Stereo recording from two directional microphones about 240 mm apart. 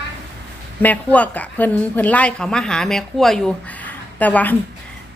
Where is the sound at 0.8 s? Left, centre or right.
Centre.